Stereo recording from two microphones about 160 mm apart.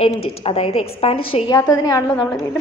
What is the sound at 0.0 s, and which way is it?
A woman's voice, 40° left (ahead or behind).